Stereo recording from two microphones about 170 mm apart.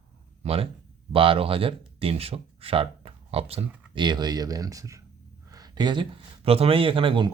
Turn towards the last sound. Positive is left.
turn(degrees=-30)  # may be behind; listen again after turning